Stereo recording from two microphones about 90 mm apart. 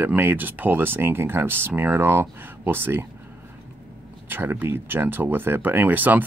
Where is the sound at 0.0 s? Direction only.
20° right (ahead or behind).